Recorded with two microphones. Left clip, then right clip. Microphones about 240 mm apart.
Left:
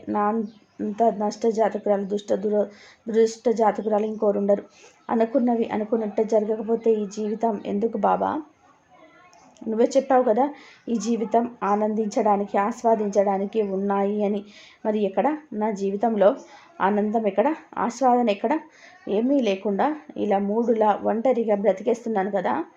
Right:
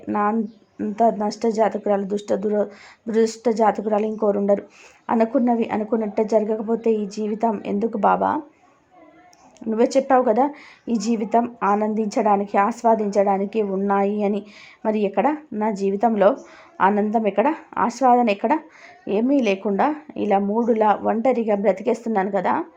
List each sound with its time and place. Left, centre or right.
0.1 s a woman's voice: centre
9.6 s a woman's voice: centre